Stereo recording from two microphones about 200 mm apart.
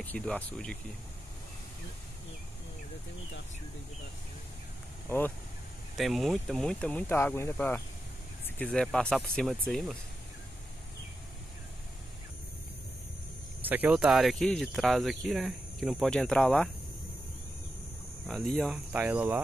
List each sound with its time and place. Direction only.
0.0 s speech: 5° left (ahead or behind)
5.0 s speech: 10° left (ahead or behind)
5.9 s speech: centre (ahead or behind)
13.6 s speech: 10° right (ahead or behind)
18.2 s speech: centre (ahead or behind)